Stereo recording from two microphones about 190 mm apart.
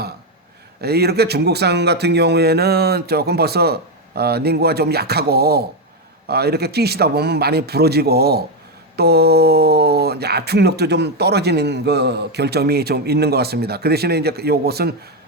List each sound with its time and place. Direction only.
0.8 s speech: 55° right (ahead or behind)